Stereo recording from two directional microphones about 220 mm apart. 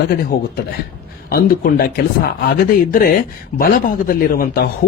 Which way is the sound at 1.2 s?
45° left (ahead or behind).